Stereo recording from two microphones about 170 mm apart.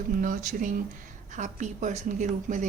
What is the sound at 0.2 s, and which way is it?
Speech, 50° right (ahead or behind).